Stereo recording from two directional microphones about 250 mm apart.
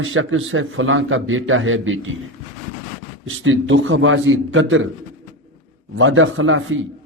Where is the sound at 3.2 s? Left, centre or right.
Right.